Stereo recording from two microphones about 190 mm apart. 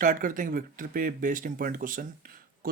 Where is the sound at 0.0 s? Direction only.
45° right (ahead or behind).